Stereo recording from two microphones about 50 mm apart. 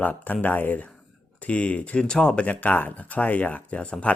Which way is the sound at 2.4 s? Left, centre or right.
Left.